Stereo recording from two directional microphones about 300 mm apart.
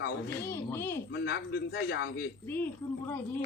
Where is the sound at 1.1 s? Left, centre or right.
Left.